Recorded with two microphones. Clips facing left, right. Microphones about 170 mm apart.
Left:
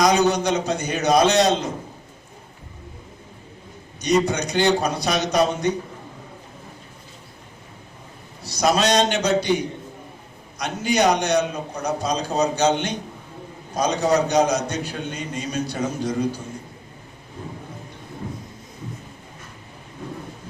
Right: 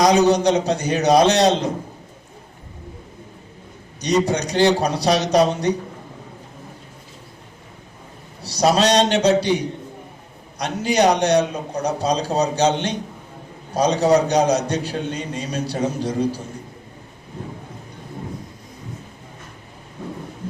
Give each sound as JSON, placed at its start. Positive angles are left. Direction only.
{"t": 0.0, "sound": "a man's voice", "side_deg": -35}
{"t": 4.0, "sound": "a man's voice", "side_deg": -35}
{"t": 8.4, "sound": "a man's voice", "side_deg": -35}
{"t": 10.6, "sound": "a man's voice", "side_deg": -35}